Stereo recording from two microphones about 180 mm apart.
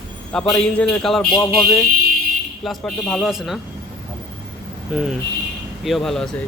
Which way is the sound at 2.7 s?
5° left (ahead or behind).